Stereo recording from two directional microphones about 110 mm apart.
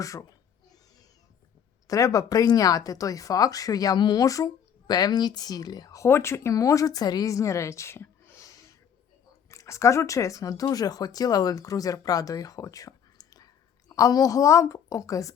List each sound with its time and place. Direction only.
0.0 s speech: 30° left (ahead or behind)
1.9 s speech: 30° left (ahead or behind)